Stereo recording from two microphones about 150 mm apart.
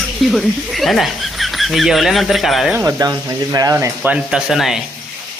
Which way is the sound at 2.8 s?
20° right (ahead or behind).